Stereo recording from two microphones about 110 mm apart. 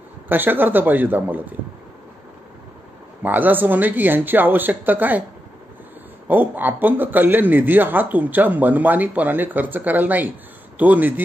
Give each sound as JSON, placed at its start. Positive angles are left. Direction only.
{"t": 0.3, "sound": "speech", "side_deg": -20}
{"t": 3.2, "sound": "speech", "side_deg": -15}
{"t": 6.2, "sound": "speech", "side_deg": -15}